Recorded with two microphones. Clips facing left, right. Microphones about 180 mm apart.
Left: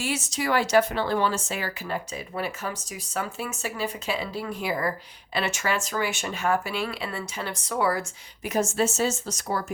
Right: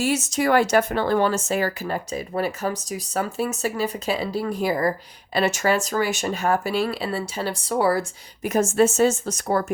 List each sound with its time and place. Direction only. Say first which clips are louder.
0.0 s speech: right 7 dB; 45° right (ahead or behind)
8.4 s a woman's voice: right 6 dB; 50° right (ahead or behind)